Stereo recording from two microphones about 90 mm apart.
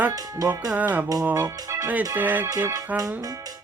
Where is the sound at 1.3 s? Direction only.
40° right (ahead or behind).